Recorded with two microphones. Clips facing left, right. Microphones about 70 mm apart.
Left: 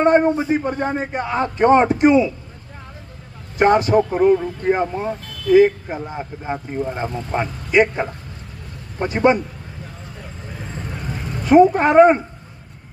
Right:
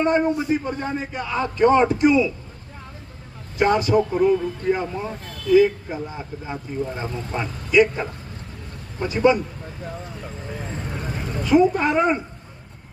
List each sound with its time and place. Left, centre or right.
0.0 s speech: left
3.6 s speech: left
7.1 s speech: left
7.7 s a woman's voice: left
11.4 s a woman's voice: left